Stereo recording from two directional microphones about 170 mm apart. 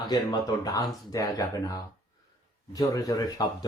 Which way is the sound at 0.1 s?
25° left (ahead or behind).